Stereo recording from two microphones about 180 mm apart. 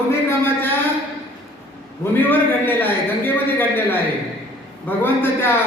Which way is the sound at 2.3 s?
10° left (ahead or behind).